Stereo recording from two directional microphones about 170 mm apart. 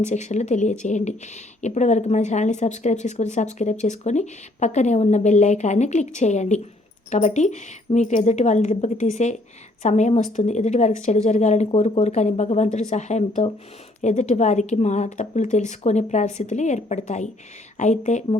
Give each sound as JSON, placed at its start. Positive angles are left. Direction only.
{"t": 0.0, "sound": "speech", "side_deg": 45}